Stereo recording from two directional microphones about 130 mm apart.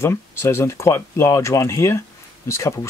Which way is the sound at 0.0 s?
20° left (ahead or behind).